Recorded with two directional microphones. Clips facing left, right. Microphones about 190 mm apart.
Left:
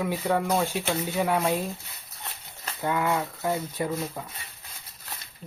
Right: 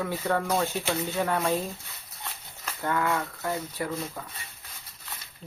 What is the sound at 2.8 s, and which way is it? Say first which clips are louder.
Speech: left 2 dB; 15° left (ahead or behind).